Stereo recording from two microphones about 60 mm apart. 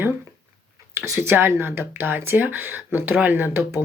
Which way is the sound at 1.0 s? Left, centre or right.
Right.